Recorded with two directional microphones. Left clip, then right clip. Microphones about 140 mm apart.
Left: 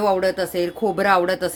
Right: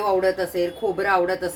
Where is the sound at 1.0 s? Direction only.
90° left.